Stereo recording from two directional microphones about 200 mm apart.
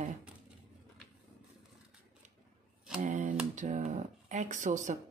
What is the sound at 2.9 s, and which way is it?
Speech, 40° right (ahead or behind).